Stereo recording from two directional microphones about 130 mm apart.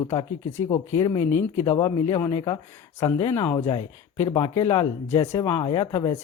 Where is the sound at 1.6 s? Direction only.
40° left (ahead or behind).